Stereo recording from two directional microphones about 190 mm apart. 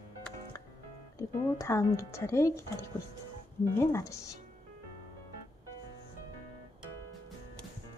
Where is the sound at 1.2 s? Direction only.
15° left (ahead or behind).